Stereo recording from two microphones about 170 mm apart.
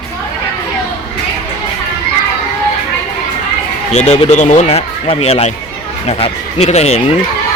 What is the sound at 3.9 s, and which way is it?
Speech, 40° left (ahead or behind).